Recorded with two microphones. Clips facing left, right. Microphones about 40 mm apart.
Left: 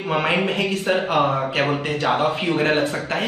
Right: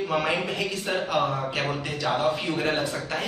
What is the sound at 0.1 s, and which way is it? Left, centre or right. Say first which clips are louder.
A woman's voice: left 8 dB; left.